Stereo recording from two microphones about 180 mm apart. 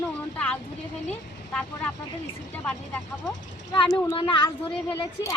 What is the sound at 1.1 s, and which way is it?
A woman's voice, 5° left (ahead or behind).